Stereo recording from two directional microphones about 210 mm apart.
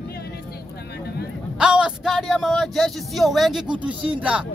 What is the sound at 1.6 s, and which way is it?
Speech, 5° right (ahead or behind).